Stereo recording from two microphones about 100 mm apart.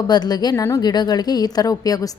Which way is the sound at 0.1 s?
45° left (ahead or behind).